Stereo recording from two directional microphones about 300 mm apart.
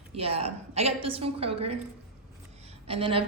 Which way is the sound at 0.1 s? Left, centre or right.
Centre.